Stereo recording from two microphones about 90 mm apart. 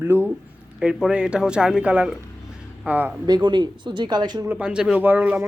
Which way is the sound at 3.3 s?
55° right (ahead or behind).